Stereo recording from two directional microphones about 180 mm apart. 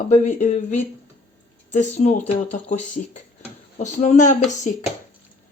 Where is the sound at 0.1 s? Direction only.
40° left (ahead or behind).